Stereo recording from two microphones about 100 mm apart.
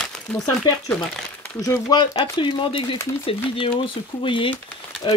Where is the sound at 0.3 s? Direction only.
10° left (ahead or behind).